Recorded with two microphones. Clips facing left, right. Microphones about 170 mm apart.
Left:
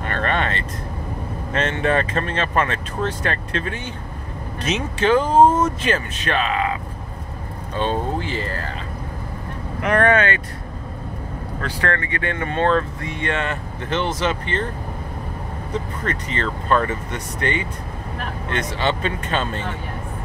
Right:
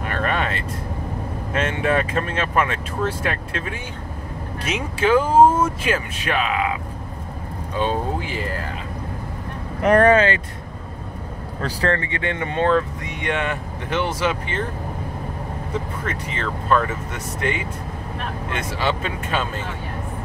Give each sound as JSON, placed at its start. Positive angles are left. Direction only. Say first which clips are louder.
{"t": 0.0, "sound": "vehicle", "louder": "left 1 dB", "side_deg": -5}
{"t": 1.5, "sound": "speech", "louder": "left 1 dB", "side_deg": -10}
{"t": 9.8, "sound": "speech", "louder": "right 3 dB", "side_deg": -35}
{"t": 11.6, "sound": "speech", "louder": "right 2 dB", "side_deg": -30}
{"t": 16.0, "sound": "speech", "louder": "left 2 dB", "side_deg": -5}